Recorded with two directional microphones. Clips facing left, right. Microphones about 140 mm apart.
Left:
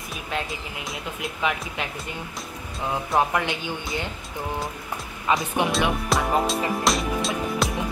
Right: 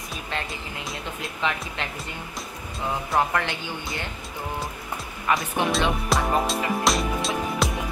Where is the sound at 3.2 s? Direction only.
15° left (ahead or behind).